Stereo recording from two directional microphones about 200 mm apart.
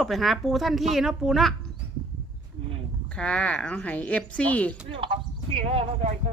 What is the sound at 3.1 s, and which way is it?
Speech, 5° left (ahead or behind).